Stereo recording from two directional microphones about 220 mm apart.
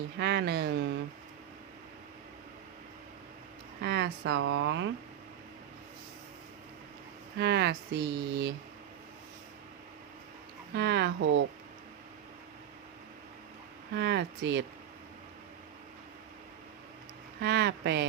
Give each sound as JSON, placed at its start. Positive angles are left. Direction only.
{"t": 0.2, "sound": "speech", "side_deg": -50}
{"t": 3.8, "sound": "speech", "side_deg": -50}
{"t": 7.3, "sound": "speech", "side_deg": -50}
{"t": 10.8, "sound": "speech", "side_deg": -50}
{"t": 13.9, "sound": "speech", "side_deg": -50}
{"t": 17.4, "sound": "speech", "side_deg": -50}